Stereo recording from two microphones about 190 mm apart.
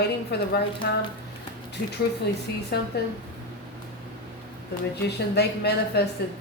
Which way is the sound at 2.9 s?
60° left (ahead or behind).